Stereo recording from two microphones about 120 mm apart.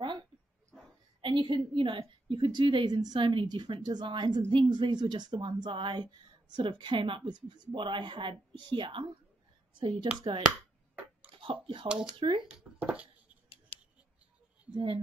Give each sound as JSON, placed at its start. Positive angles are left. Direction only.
{"t": 1.2, "sound": "speech", "side_deg": -45}
{"t": 11.3, "sound": "speech", "side_deg": -45}
{"t": 11.9, "sound": "speech", "side_deg": -10}
{"t": 12.2, "sound": "speech", "side_deg": -45}
{"t": 12.4, "sound": "a sound", "side_deg": -10}
{"t": 14.7, "sound": "speech", "side_deg": -45}